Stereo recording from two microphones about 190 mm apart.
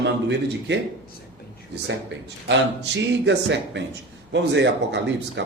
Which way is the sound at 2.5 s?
70° right (ahead or behind).